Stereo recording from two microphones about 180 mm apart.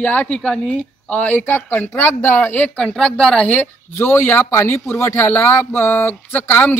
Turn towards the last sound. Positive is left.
turn(degrees=10)  # may be behind; listen again after turning